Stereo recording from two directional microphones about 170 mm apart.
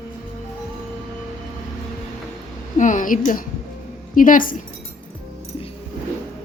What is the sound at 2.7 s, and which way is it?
A woman's voice, 45° left (ahead or behind).